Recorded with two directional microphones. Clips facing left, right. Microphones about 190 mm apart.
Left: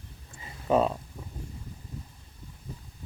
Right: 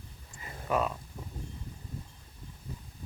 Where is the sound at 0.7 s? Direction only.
30° left (ahead or behind).